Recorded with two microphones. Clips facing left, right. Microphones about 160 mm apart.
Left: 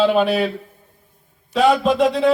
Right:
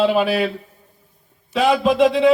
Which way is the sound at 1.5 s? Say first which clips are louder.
Left 1 dB; centre (ahead or behind).